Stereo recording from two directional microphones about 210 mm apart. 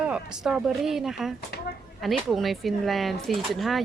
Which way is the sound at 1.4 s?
45° left (ahead or behind).